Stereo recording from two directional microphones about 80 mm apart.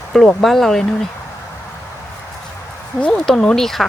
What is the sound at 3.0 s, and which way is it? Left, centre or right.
Speech, centre.